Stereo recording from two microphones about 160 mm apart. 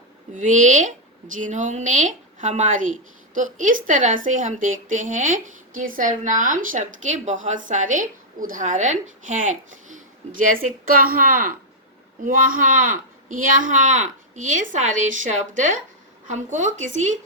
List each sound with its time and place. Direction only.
0.3 s a woman's voice: 50° right (ahead or behind)
16.3 s speech: 50° right (ahead or behind)